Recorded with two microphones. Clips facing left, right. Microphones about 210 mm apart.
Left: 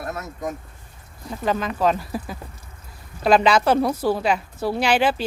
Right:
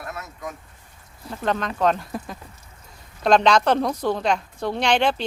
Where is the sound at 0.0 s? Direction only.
40° left (ahead or behind).